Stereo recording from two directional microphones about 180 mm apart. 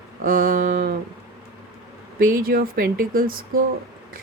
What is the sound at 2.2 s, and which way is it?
Speech, 50° right (ahead or behind).